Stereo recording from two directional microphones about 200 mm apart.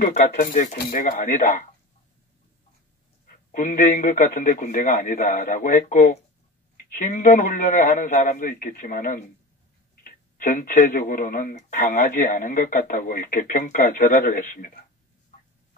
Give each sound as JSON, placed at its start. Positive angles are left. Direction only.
{"t": 0.0, "sound": "speech", "side_deg": 40}
{"t": 3.5, "sound": "speech", "side_deg": 40}